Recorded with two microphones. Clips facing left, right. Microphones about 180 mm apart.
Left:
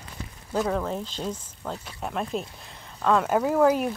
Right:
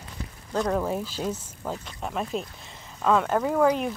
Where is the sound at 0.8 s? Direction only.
10° right (ahead or behind).